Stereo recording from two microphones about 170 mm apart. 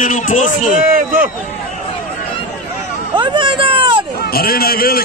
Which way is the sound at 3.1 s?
30° right (ahead or behind).